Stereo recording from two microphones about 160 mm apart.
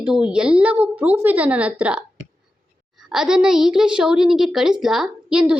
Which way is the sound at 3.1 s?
5° right (ahead or behind).